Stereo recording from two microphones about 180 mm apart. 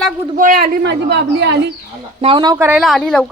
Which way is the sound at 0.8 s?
80° right.